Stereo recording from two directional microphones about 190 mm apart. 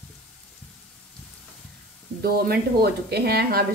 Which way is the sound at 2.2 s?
55° right (ahead or behind).